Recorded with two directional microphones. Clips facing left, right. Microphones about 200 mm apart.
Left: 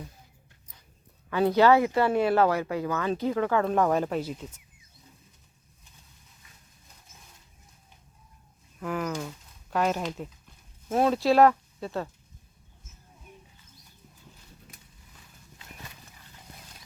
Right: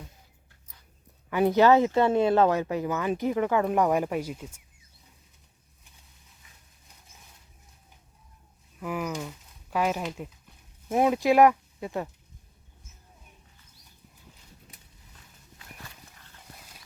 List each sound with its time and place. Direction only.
1.3 s speech: 15° right (ahead or behind)
8.8 s speech: 5° right (ahead or behind)